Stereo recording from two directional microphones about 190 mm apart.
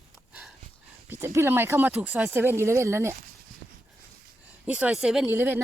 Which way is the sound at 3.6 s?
50° right (ahead or behind).